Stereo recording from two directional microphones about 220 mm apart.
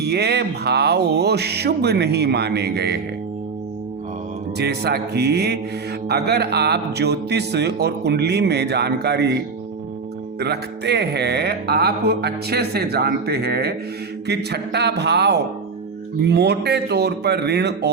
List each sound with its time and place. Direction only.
0.0 s music: 50° right (ahead or behind)
4.5 s music: 50° right (ahead or behind)
10.4 s music: 50° right (ahead or behind)